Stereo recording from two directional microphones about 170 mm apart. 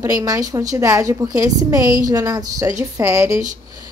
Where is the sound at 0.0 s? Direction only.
20° right (ahead or behind).